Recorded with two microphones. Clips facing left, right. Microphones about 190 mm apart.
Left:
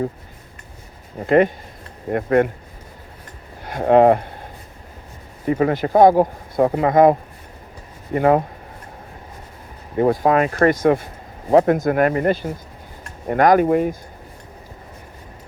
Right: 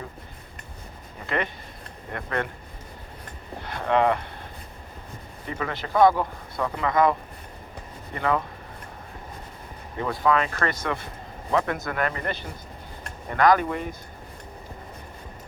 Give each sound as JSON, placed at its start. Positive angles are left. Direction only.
{"t": 1.3, "sound": "speech", "side_deg": 45}
{"t": 3.6, "sound": "speech", "side_deg": 45}
{"t": 5.5, "sound": "speech", "side_deg": 45}
{"t": 8.2, "sound": "speech", "side_deg": 45}
{"t": 10.0, "sound": "speech", "side_deg": 45}